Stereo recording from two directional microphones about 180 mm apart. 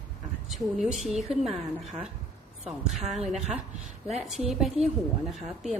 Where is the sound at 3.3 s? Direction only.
5° right (ahead or behind).